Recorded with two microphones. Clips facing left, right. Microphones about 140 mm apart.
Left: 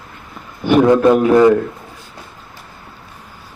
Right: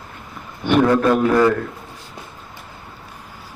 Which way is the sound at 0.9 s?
20° left (ahead or behind).